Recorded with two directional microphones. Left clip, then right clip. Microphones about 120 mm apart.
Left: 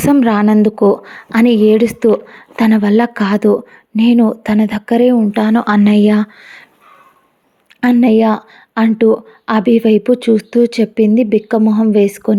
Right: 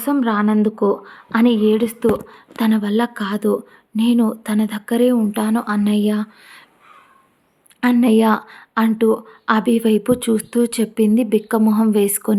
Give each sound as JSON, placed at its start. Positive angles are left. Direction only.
{"t": 0.0, "sound": "speech", "side_deg": 60}
{"t": 1.5, "sound": "a woman's voice", "side_deg": 45}
{"t": 5.3, "sound": "a woman's voice", "side_deg": 50}
{"t": 5.6, "sound": "speech", "side_deg": 80}
{"t": 8.0, "sound": "speech", "side_deg": 25}